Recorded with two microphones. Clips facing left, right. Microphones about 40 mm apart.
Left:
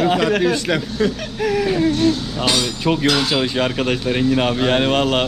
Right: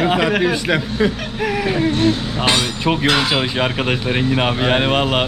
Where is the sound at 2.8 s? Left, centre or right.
Centre.